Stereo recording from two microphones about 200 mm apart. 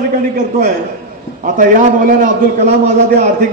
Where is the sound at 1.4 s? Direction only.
45° right (ahead or behind).